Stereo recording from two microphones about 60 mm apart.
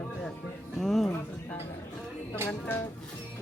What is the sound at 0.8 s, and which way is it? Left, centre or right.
Music, centre.